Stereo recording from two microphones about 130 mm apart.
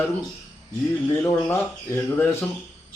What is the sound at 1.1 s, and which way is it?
Speech, 15° left (ahead or behind).